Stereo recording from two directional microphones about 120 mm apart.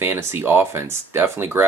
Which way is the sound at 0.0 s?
20° right (ahead or behind).